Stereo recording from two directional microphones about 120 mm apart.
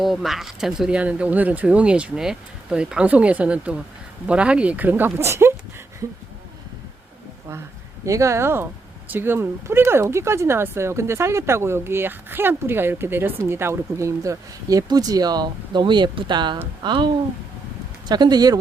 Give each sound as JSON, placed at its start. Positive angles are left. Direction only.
{"t": 0.0, "sound": "speech", "side_deg": 0}
{"t": 8.0, "sound": "speech", "side_deg": -25}
{"t": 18.1, "sound": "speech", "side_deg": -35}